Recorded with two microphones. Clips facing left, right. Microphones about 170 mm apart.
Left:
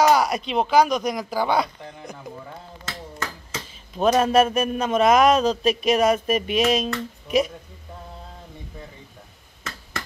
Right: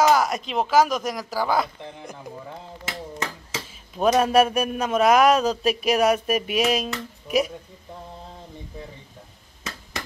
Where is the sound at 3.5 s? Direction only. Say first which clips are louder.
Left 2 dB; 5° right (ahead or behind).